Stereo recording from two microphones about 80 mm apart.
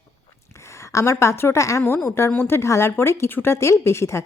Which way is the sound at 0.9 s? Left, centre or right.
Left.